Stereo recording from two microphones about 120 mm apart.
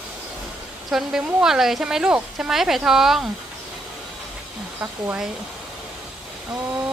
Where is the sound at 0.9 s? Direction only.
5° right (ahead or behind).